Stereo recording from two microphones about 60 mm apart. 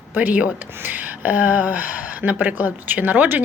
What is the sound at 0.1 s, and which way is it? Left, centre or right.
A woman's voice, right.